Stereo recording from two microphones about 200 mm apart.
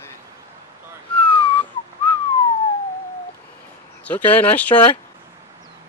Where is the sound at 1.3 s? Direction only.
25° left (ahead or behind).